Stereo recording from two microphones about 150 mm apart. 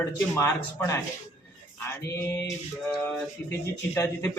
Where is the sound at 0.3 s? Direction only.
20° left (ahead or behind).